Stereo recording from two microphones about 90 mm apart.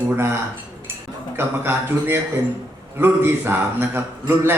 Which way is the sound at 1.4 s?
25° right (ahead or behind).